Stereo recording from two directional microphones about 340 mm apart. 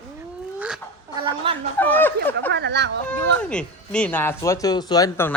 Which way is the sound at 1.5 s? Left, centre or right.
Centre.